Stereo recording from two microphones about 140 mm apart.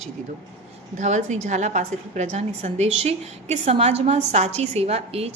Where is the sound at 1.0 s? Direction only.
60° right (ahead or behind).